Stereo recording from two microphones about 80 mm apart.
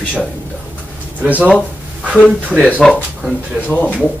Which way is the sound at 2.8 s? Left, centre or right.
Centre.